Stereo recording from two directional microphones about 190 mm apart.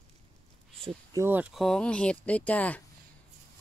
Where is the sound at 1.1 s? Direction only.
10° right (ahead or behind).